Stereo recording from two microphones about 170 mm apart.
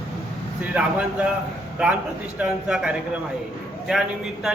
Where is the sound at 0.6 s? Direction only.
10° right (ahead or behind).